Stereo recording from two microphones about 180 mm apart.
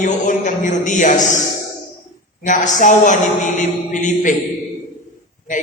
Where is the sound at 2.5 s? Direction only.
45° left (ahead or behind).